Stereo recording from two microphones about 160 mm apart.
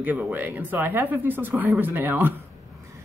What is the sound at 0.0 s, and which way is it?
Speech, 10° right (ahead or behind).